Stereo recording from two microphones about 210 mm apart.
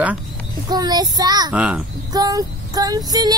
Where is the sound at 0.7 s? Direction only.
20° right (ahead or behind).